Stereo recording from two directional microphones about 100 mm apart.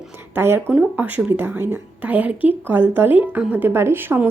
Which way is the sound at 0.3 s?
25° right (ahead or behind).